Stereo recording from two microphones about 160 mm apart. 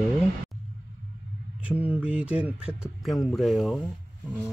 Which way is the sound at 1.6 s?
10° right (ahead or behind).